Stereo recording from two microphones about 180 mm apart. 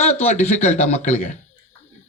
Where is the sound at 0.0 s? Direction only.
40° left (ahead or behind).